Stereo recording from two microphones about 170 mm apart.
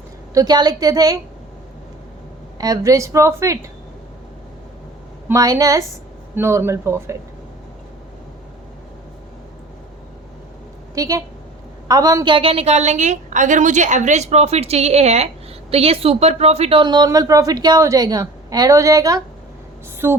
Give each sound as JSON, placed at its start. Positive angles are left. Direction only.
{"t": 0.3, "sound": "speech", "side_deg": -25}
{"t": 2.6, "sound": "a woman's voice", "side_deg": -20}
{"t": 5.3, "sound": "a woman's voice", "side_deg": -20}
{"t": 10.9, "sound": "a woman's voice", "side_deg": -20}